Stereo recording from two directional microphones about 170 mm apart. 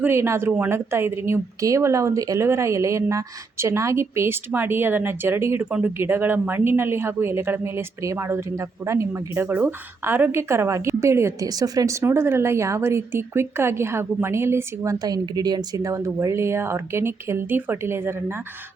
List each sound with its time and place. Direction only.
0.0 s a woman's voice: 15° right (ahead or behind)